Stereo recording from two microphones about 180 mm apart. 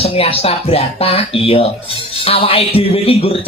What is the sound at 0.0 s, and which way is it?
Speech, 35° left (ahead or behind).